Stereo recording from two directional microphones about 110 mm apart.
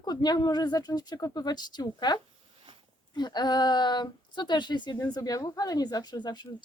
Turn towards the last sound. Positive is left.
turn(degrees=40)  # may be behind; listen again after turning